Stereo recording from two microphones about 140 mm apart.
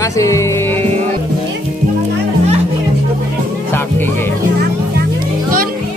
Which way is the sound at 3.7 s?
15° left (ahead or behind).